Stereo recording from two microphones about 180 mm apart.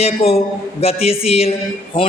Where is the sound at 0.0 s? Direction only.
35° left (ahead or behind).